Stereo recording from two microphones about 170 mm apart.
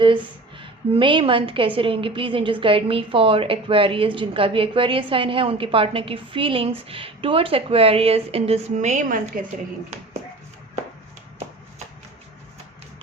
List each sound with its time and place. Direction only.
0.0 s a woman's voice: 30° right (ahead or behind); by 9.4 s 55° right (ahead or behind)